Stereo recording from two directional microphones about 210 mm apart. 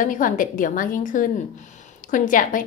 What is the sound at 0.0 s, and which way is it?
A woman's voice, 40° left (ahead or behind).